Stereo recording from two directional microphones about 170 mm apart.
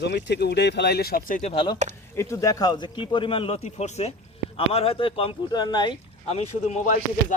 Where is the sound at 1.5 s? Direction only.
30° left (ahead or behind).